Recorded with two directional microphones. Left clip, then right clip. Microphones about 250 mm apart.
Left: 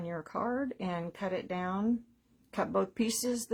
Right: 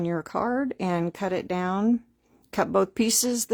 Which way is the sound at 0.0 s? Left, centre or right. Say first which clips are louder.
Right 8 dB; right.